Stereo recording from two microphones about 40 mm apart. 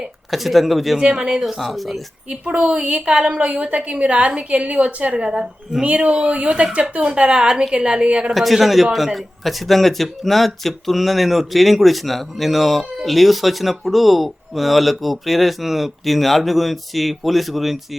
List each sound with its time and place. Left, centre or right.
0.3 s speech: centre
0.9 s speech: right
1.4 s speech: centre
2.6 s a woman's voice: right
8.3 s speech: centre